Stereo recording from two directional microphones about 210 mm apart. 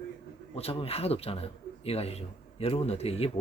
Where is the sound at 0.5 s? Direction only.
25° left (ahead or behind).